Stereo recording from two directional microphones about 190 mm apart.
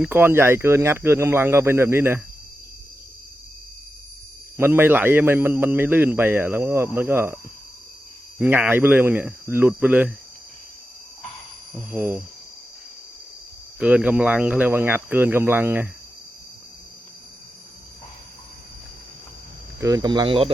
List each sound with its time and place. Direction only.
0.0 s speech: 10° right (ahead or behind)
4.5 s speech: 10° right (ahead or behind)
8.4 s speech: 10° right (ahead or behind)
11.8 s speech: 10° right (ahead or behind)
13.7 s speech: 5° right (ahead or behind)
19.8 s speech: 20° right (ahead or behind)